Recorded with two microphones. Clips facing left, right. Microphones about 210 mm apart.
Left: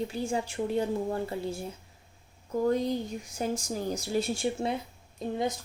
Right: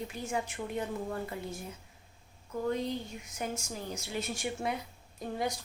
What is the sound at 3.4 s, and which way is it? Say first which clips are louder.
A woman's voice: left 6 dB; 35° left (ahead or behind).